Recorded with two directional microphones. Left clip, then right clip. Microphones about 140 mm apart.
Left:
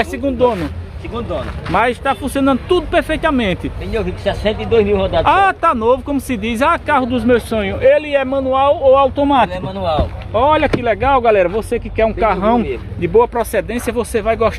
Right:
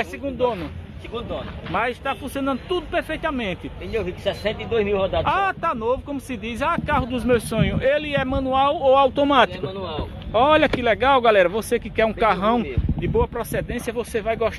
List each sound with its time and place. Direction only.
0.0 s speech: 10° left (ahead or behind)
1.7 s speech: 10° left (ahead or behind)
3.9 s speech: 90° right
5.2 s speech: 10° left (ahead or behind)
6.9 s a man's voice: 5° right (ahead or behind); by 12.5 s 30° right (ahead or behind)
13.0 s speech: 5° left (ahead or behind)